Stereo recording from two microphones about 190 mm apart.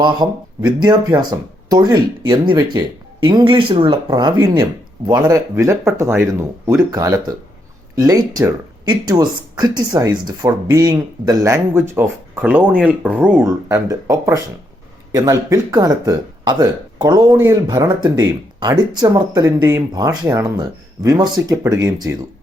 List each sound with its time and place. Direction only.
0.0 s speech: 20° right (ahead or behind)